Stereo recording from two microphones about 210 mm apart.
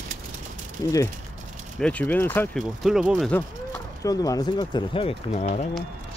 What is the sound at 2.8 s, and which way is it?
Speech, centre (ahead or behind).